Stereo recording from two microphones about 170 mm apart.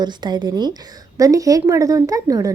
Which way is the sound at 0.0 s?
25° right (ahead or behind).